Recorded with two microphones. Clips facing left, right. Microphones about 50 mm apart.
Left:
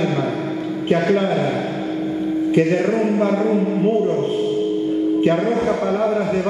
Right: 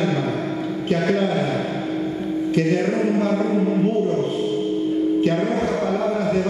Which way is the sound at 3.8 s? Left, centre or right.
Left.